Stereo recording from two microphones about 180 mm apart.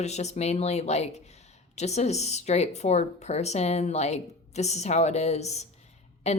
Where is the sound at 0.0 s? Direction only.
40° left (ahead or behind).